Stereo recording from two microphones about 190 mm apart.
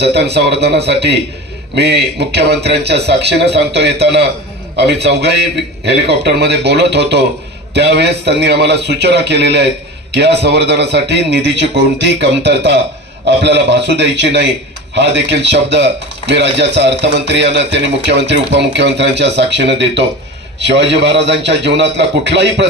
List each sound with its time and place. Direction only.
0.0 s a man's voice: 60° right (ahead or behind)